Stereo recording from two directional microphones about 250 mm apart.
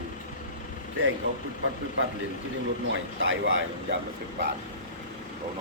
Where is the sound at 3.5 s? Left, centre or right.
Right.